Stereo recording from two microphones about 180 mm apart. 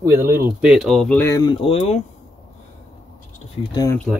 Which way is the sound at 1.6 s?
35° left (ahead or behind).